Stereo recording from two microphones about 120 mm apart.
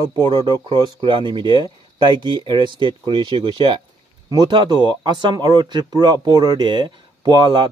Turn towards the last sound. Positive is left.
turn(degrees=-40)  # may be behind; listen again after turning